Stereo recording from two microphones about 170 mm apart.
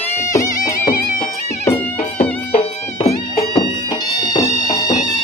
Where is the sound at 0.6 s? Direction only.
50° left (ahead or behind).